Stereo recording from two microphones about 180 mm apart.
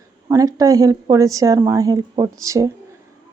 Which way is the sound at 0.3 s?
20° right (ahead or behind).